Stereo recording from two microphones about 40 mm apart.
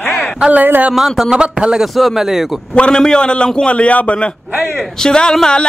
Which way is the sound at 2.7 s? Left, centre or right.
Left.